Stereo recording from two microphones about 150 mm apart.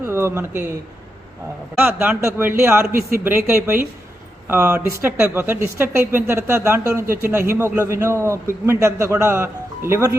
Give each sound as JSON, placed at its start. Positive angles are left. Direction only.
{"t": 0.0, "sound": "speech", "side_deg": -15}
{"t": 1.8, "sound": "speech", "side_deg": -15}
{"t": 2.8, "sound": "a man's voice", "side_deg": -75}
{"t": 3.2, "sound": "speech", "side_deg": -15}